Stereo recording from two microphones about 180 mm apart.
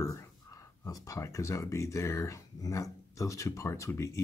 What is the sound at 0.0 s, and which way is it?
Speech, 20° left (ahead or behind).